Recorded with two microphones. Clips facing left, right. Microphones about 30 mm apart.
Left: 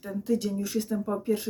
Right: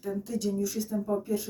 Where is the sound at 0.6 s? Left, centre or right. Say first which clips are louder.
Left 1 dB; left.